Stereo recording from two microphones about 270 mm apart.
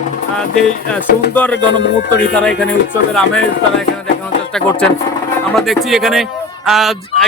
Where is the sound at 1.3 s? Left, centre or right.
Centre.